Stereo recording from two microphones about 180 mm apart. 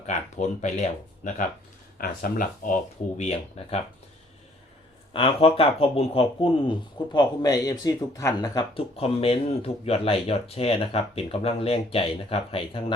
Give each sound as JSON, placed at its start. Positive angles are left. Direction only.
{"t": 0.0, "sound": "speech", "side_deg": 40}
{"t": 5.1, "sound": "speech", "side_deg": 30}